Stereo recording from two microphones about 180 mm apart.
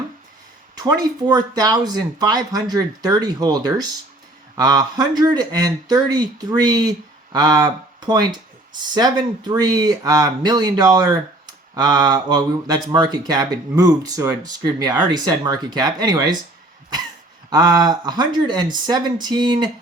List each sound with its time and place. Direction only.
0.8 s speech: 20° right (ahead or behind)
17.5 s speech: 25° right (ahead or behind)